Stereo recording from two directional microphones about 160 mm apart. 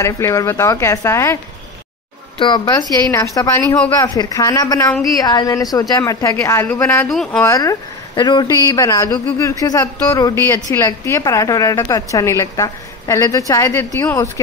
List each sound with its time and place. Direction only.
0.0 s a woman's voice: 20° left (ahead or behind)
2.3 s a man's voice: 30° left (ahead or behind); by 7.1 s 10° left (ahead or behind)
7.1 s speech: centre (ahead or behind)
7.4 s a man's voice: 20° left (ahead or behind)